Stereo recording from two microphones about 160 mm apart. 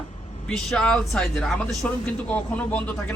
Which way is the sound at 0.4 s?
5° left (ahead or behind).